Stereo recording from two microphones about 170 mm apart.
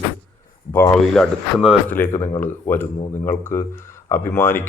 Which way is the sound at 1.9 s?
15° left (ahead or behind).